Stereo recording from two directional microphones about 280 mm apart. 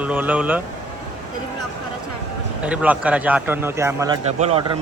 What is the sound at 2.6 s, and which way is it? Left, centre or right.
A man's voice, centre.